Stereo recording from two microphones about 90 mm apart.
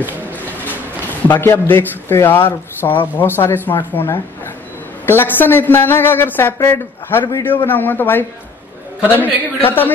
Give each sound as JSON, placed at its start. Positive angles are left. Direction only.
{"t": 1.2, "sound": "a man's voice", "side_deg": 25}